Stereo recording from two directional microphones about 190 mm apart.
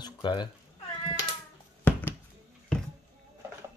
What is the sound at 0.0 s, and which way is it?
Cat, 25° left (ahead or behind).